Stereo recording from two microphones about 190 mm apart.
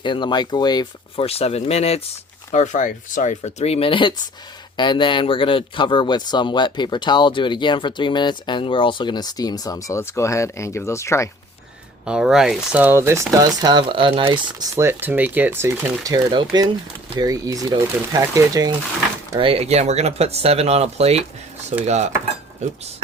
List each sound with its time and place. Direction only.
0.0 s speech: 25° left (ahead or behind)
12.0 s speech: 5° right (ahead or behind); by 14.7 s 25° right (ahead or behind)
14.8 s speech: 10° right (ahead or behind)
19.4 s speech: 30° right (ahead or behind)